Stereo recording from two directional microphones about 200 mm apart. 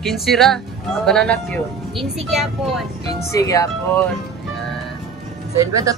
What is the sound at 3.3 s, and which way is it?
Speech, 15° left (ahead or behind).